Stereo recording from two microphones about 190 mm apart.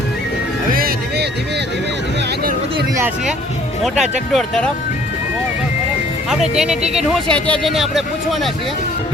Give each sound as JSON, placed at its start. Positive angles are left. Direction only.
{"t": 0.7, "sound": "music", "side_deg": -50}
{"t": 3.8, "sound": "speech", "side_deg": -5}
{"t": 6.3, "sound": "speech", "side_deg": 0}